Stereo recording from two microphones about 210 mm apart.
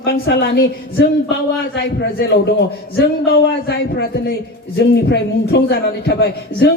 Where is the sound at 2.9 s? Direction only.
50° left (ahead or behind).